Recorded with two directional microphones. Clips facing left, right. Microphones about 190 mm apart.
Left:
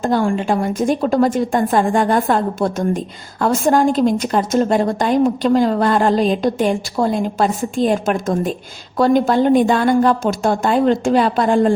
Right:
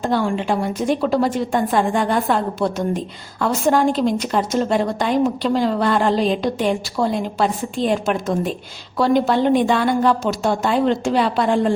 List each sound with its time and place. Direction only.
0.0 s a woman's voice: 45° left (ahead or behind)